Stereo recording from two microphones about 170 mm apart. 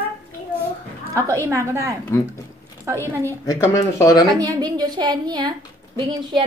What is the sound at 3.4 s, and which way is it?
Speech, 15° left (ahead or behind).